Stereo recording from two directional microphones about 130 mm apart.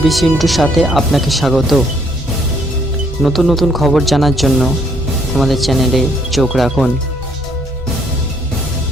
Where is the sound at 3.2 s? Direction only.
Centre (ahead or behind).